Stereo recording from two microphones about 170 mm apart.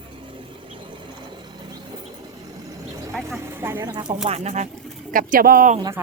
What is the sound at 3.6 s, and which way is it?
Speech, 15° right (ahead or behind).